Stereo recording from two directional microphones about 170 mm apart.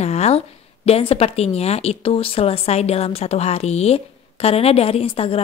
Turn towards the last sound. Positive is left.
turn(degrees=35)  # may be behind; listen again after turning